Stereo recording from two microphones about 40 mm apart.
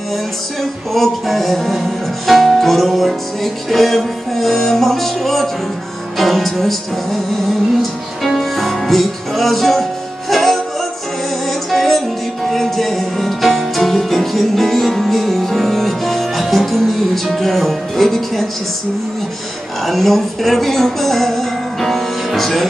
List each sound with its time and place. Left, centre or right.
0.9 s music: centre
19.9 s speech: centre